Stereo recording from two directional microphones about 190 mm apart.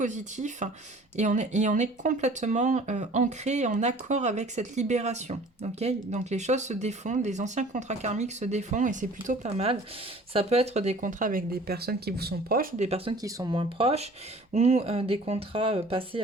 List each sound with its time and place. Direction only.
0.0 s speech: 40° right (ahead or behind)
12.8 s speech: 30° right (ahead or behind)
13.2 s speech: 20° right (ahead or behind)